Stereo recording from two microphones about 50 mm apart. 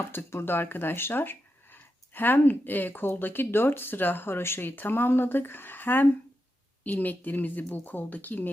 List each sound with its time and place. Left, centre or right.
0.3 s speech: left